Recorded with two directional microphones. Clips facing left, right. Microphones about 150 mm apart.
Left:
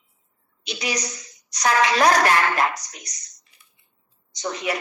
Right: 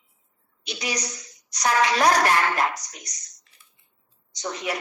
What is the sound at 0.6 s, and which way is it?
A woman's voice, 90° left.